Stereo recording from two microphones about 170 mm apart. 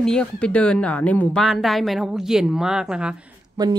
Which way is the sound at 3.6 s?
20° right (ahead or behind).